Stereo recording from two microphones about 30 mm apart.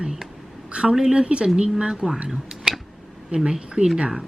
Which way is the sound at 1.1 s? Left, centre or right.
Right.